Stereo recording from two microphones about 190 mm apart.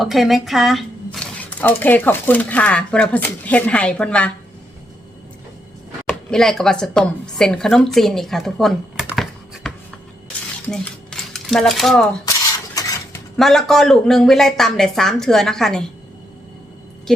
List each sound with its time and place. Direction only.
0.0 s speech: centre (ahead or behind)
6.1 s speech: centre (ahead or behind)
9.6 s a sound: centre (ahead or behind)
10.7 s speech: centre (ahead or behind)
12.2 s a sound: 15° left (ahead or behind)
13.3 s speech: centre (ahead or behind)
17.1 s speech: 5° left (ahead or behind)